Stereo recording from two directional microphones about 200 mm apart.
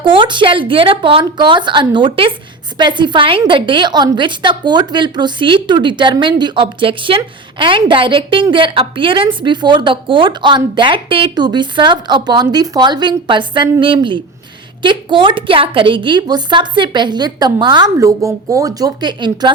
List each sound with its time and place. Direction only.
0.0 s a woman's voice: 25° right (ahead or behind)